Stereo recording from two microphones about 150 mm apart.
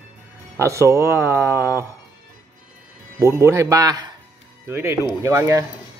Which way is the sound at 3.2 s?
20° right (ahead or behind).